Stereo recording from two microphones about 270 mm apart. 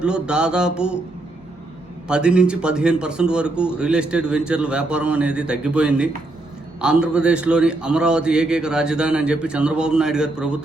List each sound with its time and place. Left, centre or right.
0.0 s a man's voice: centre
2.0 s a man's voice: centre